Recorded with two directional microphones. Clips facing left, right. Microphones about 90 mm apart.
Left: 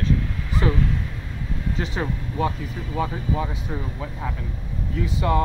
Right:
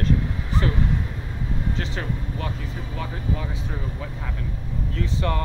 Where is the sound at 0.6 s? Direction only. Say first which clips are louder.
Left 3 dB; 15° left (ahead or behind).